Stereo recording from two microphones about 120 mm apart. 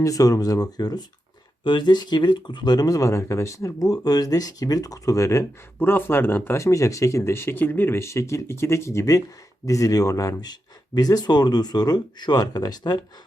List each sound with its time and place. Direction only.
0.0 s speech: 30° left (ahead or behind)